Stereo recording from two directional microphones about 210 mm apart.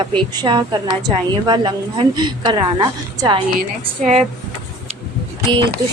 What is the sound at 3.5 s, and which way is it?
Speech, 35° right (ahead or behind).